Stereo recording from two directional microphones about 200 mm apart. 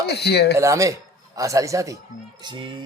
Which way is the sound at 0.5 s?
15° right (ahead or behind).